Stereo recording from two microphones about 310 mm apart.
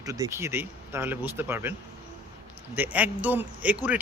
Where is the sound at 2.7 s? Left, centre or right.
Centre.